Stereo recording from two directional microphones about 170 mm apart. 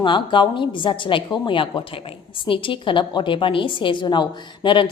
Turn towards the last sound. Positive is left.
turn(degrees=30)  # may be behind; listen again after turning